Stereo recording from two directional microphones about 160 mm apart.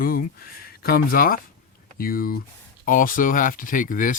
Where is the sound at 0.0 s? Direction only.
65° left (ahead or behind).